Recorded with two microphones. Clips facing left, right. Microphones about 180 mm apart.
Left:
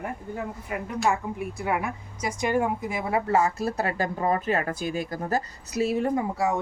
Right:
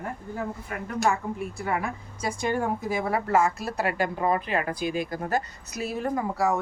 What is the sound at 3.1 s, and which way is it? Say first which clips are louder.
A woman's voice: left 2 dB; 30° left (ahead or behind).